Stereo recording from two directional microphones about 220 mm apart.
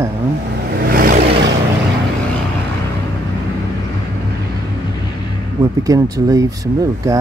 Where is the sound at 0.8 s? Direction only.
40° right (ahead or behind).